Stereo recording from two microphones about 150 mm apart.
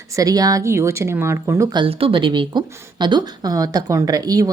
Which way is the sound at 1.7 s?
35° right (ahead or behind).